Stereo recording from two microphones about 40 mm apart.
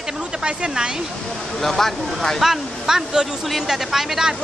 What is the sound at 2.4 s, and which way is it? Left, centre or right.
Speech, centre.